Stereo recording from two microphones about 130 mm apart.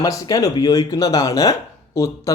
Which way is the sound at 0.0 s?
25° left (ahead or behind).